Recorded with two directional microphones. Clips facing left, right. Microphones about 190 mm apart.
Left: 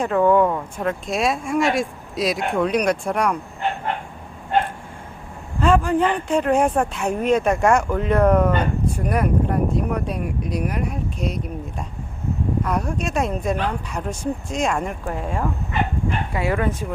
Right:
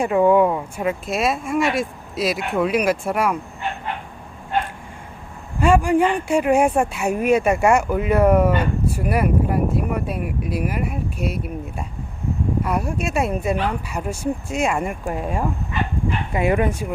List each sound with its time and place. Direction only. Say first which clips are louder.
0.0 s speech: right 1 dB; 10° right (ahead or behind)
5.5 s speech: right 2 dB; 10° right (ahead or behind)